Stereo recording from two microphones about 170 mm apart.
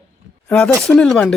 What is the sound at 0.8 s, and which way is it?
Speech, 5° left (ahead or behind).